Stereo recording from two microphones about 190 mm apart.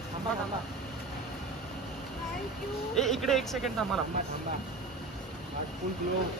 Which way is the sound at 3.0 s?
Centre (ahead or behind).